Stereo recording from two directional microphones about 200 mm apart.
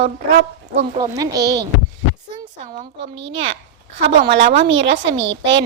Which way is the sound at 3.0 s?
65° right (ahead or behind).